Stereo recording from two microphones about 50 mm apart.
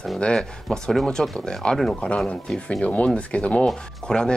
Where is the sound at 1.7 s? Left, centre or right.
Centre.